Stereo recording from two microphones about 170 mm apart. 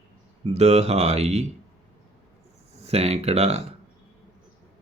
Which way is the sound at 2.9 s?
40° right (ahead or behind).